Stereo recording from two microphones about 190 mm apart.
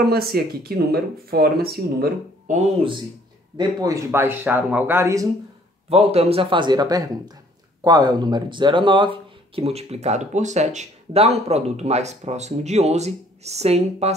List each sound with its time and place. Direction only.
0.1 s speech: 55° right (ahead or behind)
3.5 s speech: 20° right (ahead or behind)
5.9 s speech: 30° right (ahead or behind)